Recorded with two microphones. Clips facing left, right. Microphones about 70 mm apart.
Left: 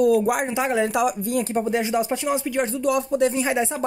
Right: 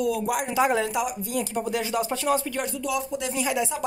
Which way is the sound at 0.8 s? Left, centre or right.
Left.